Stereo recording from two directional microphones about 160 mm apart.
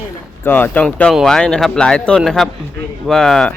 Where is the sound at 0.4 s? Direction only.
10° left (ahead or behind).